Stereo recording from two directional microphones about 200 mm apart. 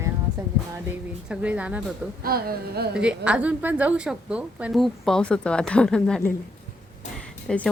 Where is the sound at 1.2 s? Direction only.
5° right (ahead or behind).